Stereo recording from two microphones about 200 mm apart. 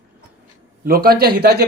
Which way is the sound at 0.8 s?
50° right (ahead or behind).